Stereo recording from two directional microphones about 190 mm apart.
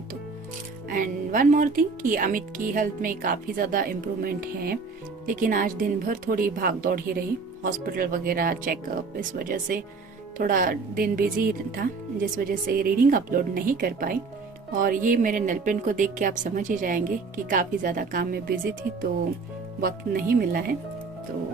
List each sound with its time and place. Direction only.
0.9 s a woman's voice: 45° right (ahead or behind)
19.8 s a woman's voice: 50° right (ahead or behind)